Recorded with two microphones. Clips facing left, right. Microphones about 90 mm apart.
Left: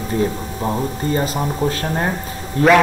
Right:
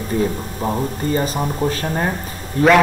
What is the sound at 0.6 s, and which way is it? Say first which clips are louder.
A man's voice: even; centre (ahead or behind).